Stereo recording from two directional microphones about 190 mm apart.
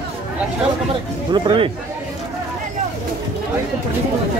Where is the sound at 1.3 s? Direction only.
25° right (ahead or behind).